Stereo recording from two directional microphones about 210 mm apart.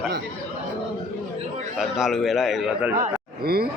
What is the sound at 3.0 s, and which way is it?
Speech, 45° right (ahead or behind).